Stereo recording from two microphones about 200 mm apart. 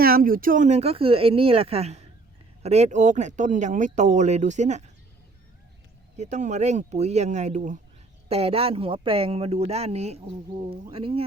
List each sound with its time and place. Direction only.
0.0 s speech: 45° right (ahead or behind)
6.1 s speech: 35° right (ahead or behind)